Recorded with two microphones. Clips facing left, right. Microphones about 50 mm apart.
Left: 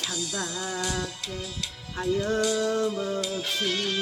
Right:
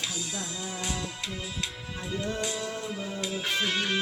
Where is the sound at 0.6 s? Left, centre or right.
Left.